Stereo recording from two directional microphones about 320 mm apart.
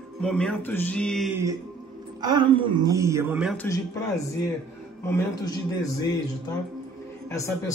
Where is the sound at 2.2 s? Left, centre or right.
Centre.